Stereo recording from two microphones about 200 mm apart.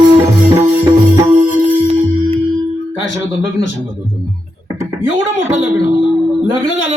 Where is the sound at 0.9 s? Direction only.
20° right (ahead or behind).